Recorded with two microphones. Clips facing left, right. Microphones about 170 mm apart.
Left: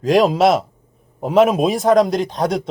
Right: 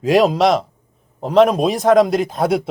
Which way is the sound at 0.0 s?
Centre (ahead or behind).